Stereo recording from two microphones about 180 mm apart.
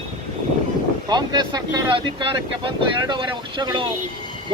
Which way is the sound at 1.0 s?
25° right (ahead or behind).